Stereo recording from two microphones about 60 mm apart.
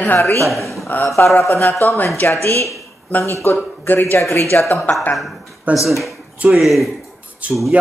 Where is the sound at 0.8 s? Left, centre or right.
Left.